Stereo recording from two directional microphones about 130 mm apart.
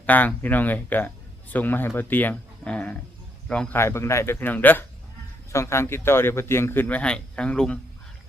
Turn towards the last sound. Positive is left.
turn(degrees=10)  # may be behind; listen again after turning